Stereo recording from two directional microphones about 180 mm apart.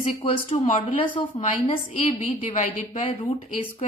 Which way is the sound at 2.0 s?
40° left (ahead or behind).